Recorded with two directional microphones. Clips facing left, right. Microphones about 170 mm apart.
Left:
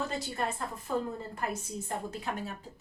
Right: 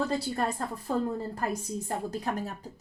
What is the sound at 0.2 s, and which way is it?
Speech, 35° right (ahead or behind).